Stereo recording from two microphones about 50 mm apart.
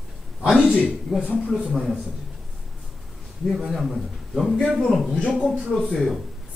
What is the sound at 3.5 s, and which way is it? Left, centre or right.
A man's voice, centre.